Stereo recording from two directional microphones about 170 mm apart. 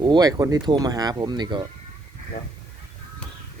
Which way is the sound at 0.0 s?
25° right (ahead or behind).